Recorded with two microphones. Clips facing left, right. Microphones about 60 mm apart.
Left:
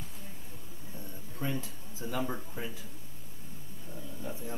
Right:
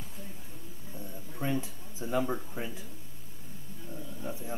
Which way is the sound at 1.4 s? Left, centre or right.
Right.